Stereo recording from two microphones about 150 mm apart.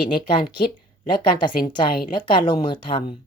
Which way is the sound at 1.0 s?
30° left (ahead or behind).